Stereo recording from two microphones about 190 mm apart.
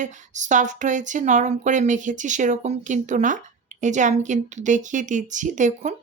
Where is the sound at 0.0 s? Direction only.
40° right (ahead or behind).